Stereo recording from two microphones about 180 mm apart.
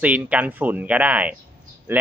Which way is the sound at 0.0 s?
10° right (ahead or behind).